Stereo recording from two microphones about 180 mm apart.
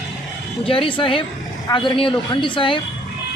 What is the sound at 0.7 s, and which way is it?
Speech, 30° left (ahead or behind).